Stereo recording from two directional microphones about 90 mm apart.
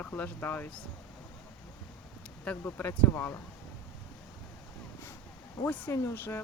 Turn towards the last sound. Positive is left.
turn(degrees=25)  # may be behind; listen again after turning